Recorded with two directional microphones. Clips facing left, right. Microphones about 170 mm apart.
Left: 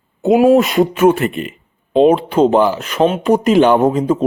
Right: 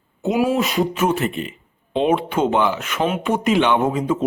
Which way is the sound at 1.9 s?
35° left (ahead or behind).